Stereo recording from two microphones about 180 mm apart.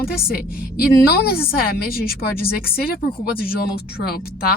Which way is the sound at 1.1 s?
60° left (ahead or behind).